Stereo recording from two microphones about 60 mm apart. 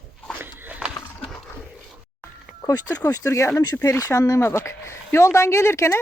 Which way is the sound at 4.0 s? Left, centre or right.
Left.